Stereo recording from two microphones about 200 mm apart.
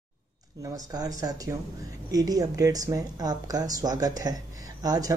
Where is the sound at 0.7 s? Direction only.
20° right (ahead or behind).